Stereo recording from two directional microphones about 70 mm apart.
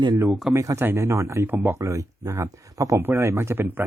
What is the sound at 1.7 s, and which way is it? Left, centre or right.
Speech, right.